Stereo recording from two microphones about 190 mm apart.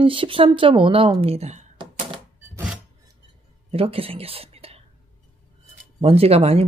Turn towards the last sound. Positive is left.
turn(degrees=-35)  # may be behind; listen again after turning